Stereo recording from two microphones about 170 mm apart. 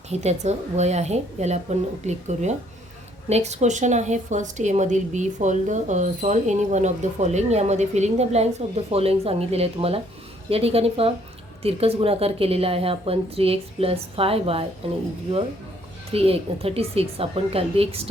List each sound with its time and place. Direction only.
0.1 s a woman's voice: 40° right (ahead or behind)
16.1 s a woman's voice: 35° right (ahead or behind)